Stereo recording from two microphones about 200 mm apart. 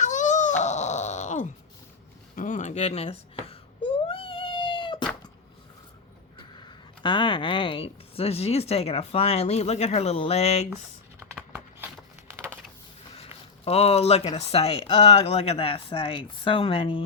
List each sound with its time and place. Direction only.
0.0 s a sound: 40° left (ahead or behind)
6.7 s speech: 25° left (ahead or behind)
13.7 s speech: 30° left (ahead or behind)